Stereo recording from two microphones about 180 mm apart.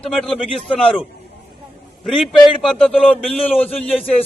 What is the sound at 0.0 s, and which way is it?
A man's voice, centre (ahead or behind).